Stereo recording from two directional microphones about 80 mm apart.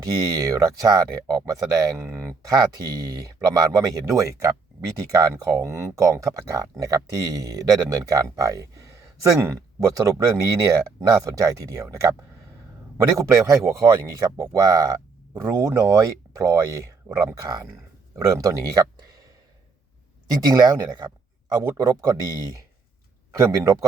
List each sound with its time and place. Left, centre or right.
0.0 s speech: right
13.1 s speech: right
20.3 s speech: right
21.6 s speech: right